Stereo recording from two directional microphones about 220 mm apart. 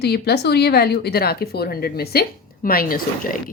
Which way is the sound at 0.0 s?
50° left (ahead or behind).